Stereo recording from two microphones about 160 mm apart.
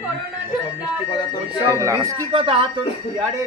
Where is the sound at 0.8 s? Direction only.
25° left (ahead or behind).